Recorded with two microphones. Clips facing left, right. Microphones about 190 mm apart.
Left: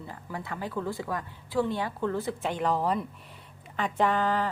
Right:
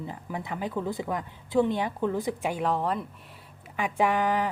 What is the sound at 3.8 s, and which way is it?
Speech, 10° right (ahead or behind).